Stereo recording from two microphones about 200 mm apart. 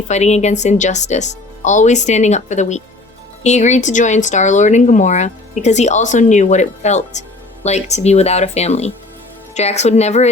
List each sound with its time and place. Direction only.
0.1 s speech: 35° left (ahead or behind)